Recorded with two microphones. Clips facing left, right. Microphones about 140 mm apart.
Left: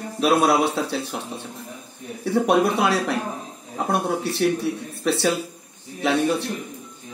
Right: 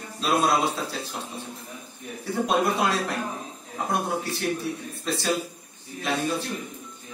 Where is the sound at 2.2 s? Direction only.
65° left (ahead or behind).